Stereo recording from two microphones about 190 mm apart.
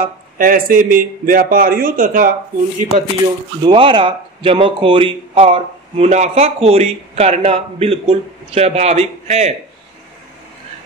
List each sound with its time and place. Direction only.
0.4 s a man's voice: 50° right (ahead or behind)
2.8 s speech: 20° right (ahead or behind)